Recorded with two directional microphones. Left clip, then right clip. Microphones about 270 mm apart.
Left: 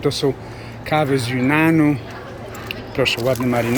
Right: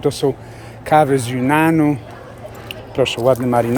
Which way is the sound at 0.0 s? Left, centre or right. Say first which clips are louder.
Right 2 dB; centre.